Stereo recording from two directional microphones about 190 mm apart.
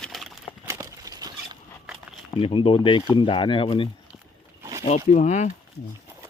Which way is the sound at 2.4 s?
30° left (ahead or behind).